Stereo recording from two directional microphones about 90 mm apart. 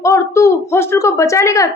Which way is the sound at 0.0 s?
35° left (ahead or behind).